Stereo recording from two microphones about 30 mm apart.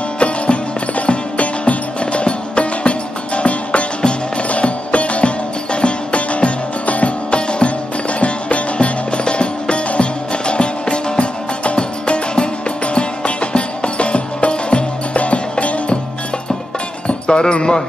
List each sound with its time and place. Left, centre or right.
0.2 s music: left
7.2 s music: left
15.1 s music: left
17.3 s speech: left